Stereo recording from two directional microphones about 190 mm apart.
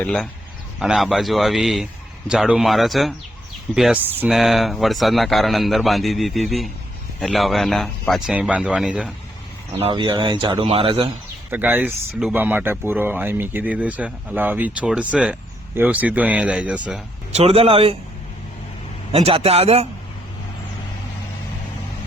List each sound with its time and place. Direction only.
0.0 s speech: 5° left (ahead or behind)
9.8 s speech: 25° right (ahead or behind)
11.5 s speech: 10° right (ahead or behind)
17.3 s speech: 30° right (ahead or behind)
19.1 s speech: 30° right (ahead or behind)